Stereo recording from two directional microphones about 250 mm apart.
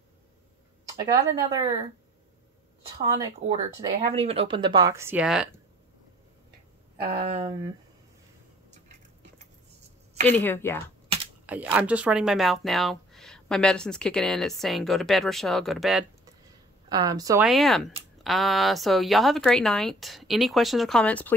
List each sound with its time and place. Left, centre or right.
0.8 s speech: centre
3.0 s speech: centre
7.0 s speech: right
10.2 s speech: centre
11.4 s speech: centre
16.9 s speech: centre
17.5 s speech: centre